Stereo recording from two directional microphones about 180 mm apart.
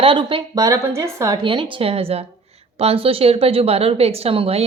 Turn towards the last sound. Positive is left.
turn(degrees=-35)  # may be behind; listen again after turning